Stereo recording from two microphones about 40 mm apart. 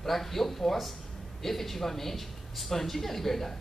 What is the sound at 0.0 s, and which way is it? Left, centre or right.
Speech, centre.